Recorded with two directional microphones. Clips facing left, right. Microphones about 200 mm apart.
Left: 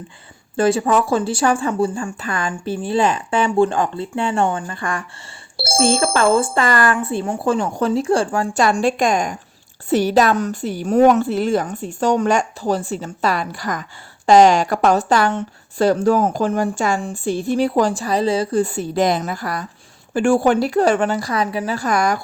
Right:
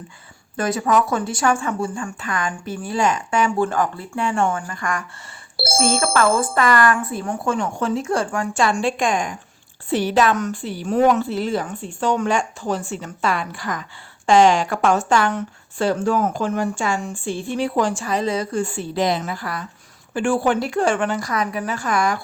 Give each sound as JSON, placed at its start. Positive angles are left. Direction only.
{"t": 0.5, "sound": "a woman's voice", "side_deg": 30}